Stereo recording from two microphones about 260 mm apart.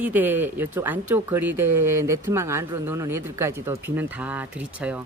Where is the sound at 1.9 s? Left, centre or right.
Centre.